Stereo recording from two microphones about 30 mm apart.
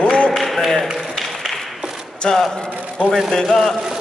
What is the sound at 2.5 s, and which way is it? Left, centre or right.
Speech, left.